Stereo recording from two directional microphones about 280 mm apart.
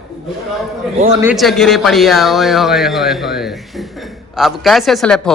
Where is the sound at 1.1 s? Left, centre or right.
Centre.